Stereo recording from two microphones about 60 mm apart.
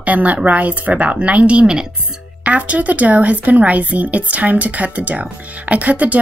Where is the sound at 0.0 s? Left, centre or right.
Right.